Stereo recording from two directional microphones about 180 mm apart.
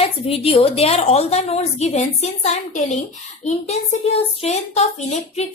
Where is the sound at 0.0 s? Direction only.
30° left (ahead or behind).